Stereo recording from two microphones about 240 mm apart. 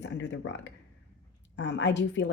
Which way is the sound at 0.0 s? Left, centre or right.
Left.